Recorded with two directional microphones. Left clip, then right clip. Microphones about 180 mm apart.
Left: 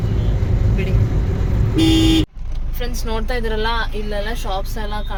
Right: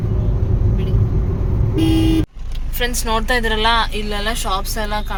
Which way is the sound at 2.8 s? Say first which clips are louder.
Right 7 dB; 15° right (ahead or behind).